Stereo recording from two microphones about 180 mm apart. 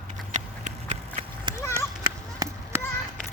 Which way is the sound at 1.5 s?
25° right (ahead or behind).